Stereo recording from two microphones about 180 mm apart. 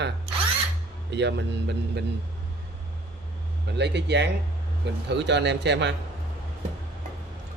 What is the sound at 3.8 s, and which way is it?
A man's voice, 70° right (ahead or behind).